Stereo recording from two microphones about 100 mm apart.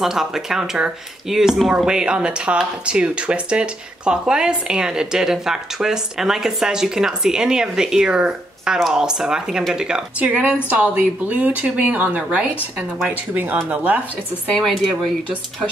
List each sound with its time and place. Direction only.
0.0 s speech: 5° right (ahead or behind)